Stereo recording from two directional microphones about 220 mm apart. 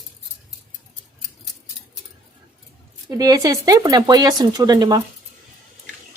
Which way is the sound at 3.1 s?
15° right (ahead or behind).